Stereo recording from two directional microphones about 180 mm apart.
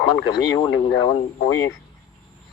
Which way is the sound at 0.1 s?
20° left (ahead or behind).